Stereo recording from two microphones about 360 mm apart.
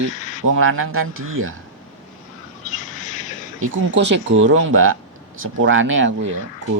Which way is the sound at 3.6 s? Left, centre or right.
Right.